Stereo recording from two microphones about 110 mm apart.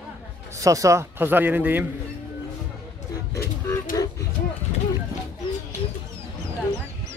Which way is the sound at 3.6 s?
30° left (ahead or behind).